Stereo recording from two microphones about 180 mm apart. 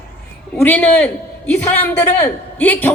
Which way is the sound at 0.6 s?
10° left (ahead or behind).